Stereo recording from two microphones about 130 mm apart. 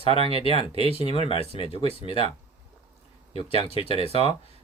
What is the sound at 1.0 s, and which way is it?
Speech, 45° left (ahead or behind).